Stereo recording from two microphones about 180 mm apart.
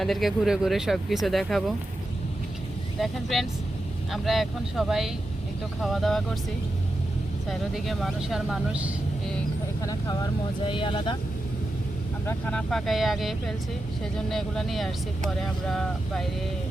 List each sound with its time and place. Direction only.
0.0 s speech: centre (ahead or behind)
3.0 s speech: centre (ahead or behind)
7.7 s speech: centre (ahead or behind)
9.8 s speech: 20° left (ahead or behind)
12.2 s speech: 5° left (ahead or behind)